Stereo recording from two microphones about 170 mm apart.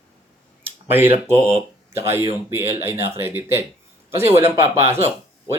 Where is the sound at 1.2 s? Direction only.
15° right (ahead or behind).